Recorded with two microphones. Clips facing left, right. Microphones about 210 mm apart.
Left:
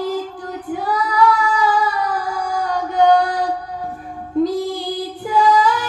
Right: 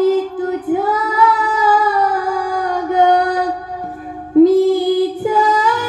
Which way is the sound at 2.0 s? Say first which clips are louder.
Right 5 dB; 50° right (ahead or behind).